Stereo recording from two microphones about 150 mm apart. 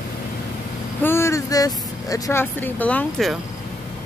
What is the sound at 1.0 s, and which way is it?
Speech, 15° left (ahead or behind).